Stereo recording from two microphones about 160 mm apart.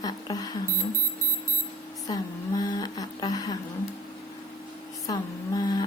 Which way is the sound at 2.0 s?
20° left (ahead or behind).